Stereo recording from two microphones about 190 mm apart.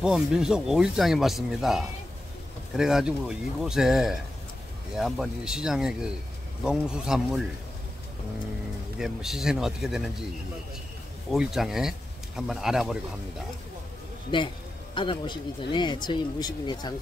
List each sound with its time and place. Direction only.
0.0 s speech: 5° right (ahead or behind)
8.9 s speech: centre (ahead or behind)
11.3 s speech: centre (ahead or behind)
14.3 s speech: 25° left (ahead or behind)